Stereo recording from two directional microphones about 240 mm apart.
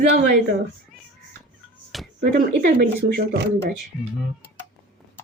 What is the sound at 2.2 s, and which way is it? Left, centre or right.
Speech, right.